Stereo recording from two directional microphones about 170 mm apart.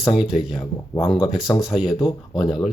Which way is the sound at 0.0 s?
Centre (ahead or behind).